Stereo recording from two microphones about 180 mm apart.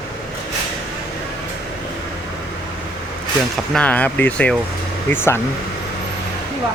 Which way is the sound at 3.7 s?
5° left (ahead or behind).